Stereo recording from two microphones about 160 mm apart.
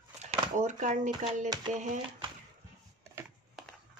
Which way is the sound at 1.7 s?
50° right (ahead or behind).